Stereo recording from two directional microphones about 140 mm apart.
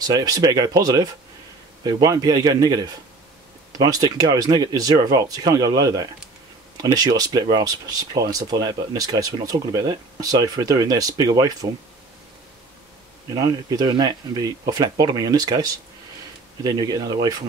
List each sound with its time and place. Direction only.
0.0 s speech: 30° right (ahead or behind)
13.3 s speech: 25° right (ahead or behind)